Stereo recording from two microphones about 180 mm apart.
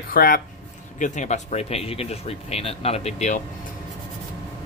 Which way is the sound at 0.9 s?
45° left (ahead or behind).